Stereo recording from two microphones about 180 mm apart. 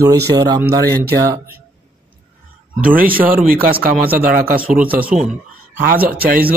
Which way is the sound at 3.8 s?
55° right (ahead or behind).